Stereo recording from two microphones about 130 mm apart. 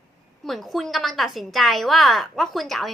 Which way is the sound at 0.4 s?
Centre (ahead or behind).